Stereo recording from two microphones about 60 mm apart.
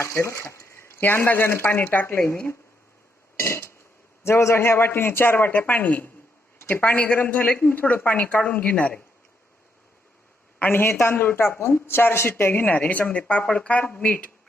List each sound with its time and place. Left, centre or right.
0.0 s speech: left
1.0 s speech: left
1.7 s speech: left
3.4 s a sound: left
4.2 s speech: left
10.6 s speech: left